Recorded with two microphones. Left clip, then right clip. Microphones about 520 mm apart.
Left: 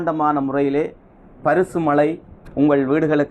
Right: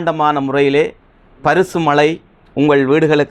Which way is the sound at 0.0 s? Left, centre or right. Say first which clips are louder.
Right 4 dB; right.